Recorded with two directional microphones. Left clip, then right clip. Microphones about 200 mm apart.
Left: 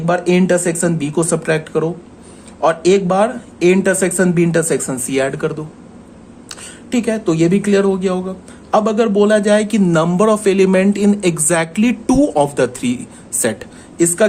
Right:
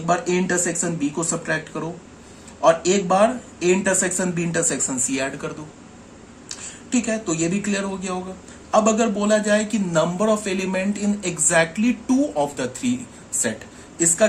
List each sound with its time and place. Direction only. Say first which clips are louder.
0.0 s speech: left 6 dB; 40° left (ahead or behind)
6.5 s speech: left 4 dB; 40° left (ahead or behind)